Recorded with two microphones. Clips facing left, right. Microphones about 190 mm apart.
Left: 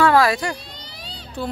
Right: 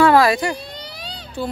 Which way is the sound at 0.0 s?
20° right (ahead or behind).